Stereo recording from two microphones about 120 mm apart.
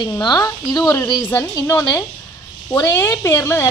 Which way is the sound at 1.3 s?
20° left (ahead or behind).